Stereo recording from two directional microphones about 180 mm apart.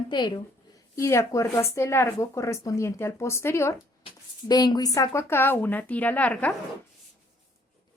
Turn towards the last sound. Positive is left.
turn(degrees=10)  # may be behind; listen again after turning